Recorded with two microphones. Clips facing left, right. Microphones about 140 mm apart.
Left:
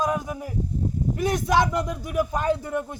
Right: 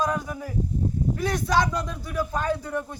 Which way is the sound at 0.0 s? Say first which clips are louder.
Left 1 dB; 20° left (ahead or behind).